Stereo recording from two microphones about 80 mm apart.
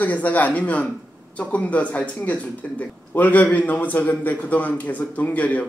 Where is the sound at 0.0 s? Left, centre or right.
Centre.